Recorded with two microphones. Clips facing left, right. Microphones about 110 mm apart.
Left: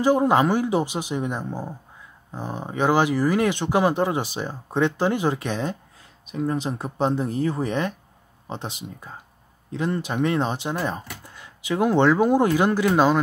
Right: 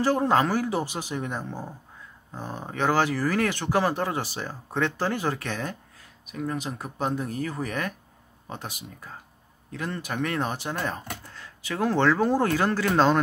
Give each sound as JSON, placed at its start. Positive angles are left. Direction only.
{"t": 0.0, "sound": "speech", "side_deg": 15}